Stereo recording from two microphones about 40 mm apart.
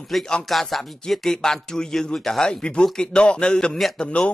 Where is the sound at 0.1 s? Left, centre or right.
Centre.